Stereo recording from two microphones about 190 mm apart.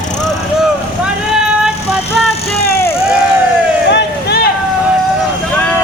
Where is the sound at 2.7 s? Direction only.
15° left (ahead or behind).